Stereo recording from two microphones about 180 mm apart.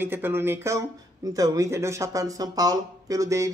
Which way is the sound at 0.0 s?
10° right (ahead or behind).